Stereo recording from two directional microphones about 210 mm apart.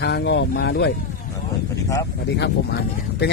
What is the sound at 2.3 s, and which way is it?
Speech, 55° left (ahead or behind).